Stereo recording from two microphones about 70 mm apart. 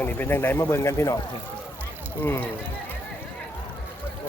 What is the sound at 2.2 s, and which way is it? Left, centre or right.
Speech, left.